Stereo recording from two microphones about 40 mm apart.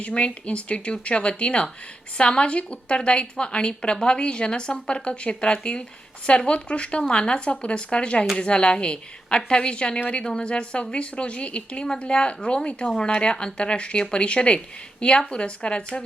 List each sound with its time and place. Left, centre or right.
0.0 s a woman's voice: left